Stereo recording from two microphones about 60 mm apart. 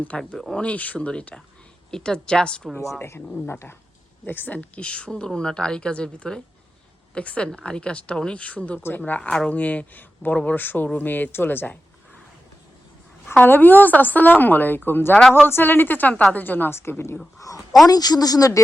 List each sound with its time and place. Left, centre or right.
0.1 s a woman's voice: centre
3.0 s a woman's voice: left
13.3 s a woman's voice: left
17.4 s speech: left
17.8 s speech: left